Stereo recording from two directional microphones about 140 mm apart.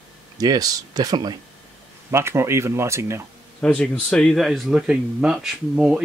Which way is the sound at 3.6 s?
5° left (ahead or behind).